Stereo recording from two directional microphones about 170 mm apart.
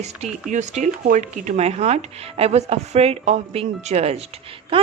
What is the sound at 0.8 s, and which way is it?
A woman's voice, 45° right (ahead or behind).